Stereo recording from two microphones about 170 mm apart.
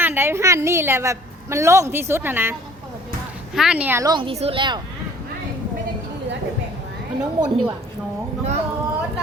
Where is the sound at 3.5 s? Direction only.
5° right (ahead or behind).